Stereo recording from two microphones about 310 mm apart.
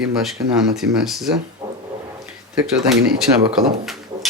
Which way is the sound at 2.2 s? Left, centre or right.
Centre.